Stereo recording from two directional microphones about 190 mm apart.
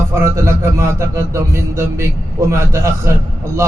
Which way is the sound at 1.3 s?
15° right (ahead or behind).